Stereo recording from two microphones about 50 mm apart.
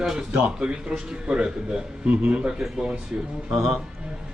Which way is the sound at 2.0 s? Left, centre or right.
Right.